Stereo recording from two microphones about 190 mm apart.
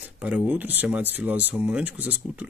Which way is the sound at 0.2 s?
5° right (ahead or behind).